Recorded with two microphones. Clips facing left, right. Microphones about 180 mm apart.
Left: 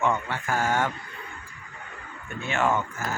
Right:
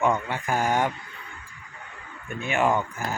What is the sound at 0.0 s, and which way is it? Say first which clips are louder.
Speech: right 2 dB; 15° right (ahead or behind).